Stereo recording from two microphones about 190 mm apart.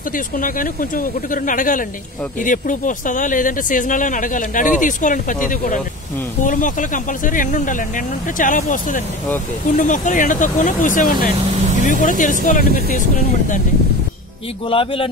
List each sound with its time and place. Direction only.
0.4 s speech: 45° left (ahead or behind)
14.7 s a man's voice: 30° left (ahead or behind)